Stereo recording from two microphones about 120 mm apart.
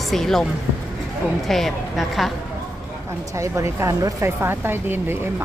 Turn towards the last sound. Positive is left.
turn(degrees=-20)  # may be behind; listen again after turning